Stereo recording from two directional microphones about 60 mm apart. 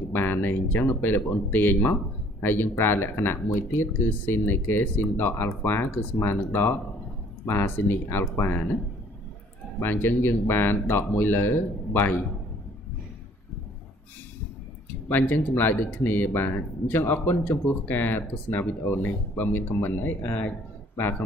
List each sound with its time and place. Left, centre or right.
0.1 s speech: left
9.8 s speech: left
15.0 s speech: left